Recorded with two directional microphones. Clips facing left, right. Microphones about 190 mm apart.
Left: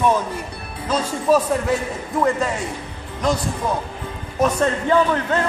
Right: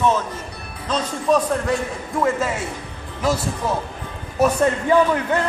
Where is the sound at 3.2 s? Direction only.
5° right (ahead or behind).